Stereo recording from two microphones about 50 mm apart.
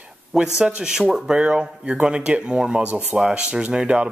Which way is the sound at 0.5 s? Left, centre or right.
Right.